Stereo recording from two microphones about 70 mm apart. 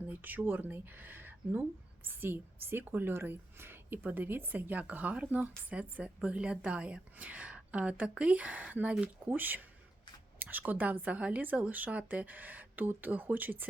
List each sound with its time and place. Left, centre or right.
0.1 s a woman's voice: right